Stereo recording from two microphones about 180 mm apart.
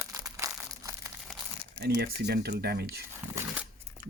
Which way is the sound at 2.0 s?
60° right (ahead or behind).